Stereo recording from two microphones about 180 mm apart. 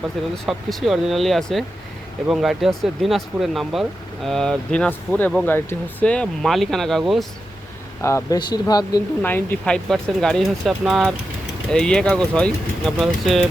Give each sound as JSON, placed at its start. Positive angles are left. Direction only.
{"t": 0.4, "sound": "speech", "side_deg": 0}
{"t": 8.0, "sound": "speech", "side_deg": 15}
{"t": 9.2, "sound": "speech", "side_deg": 10}